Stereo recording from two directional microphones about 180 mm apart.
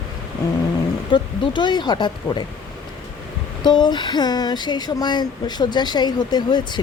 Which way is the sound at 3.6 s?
25° left (ahead or behind).